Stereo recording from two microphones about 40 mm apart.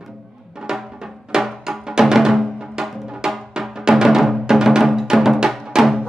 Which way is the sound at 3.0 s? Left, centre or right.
Centre.